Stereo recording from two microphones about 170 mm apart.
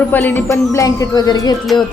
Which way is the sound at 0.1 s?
10° left (ahead or behind).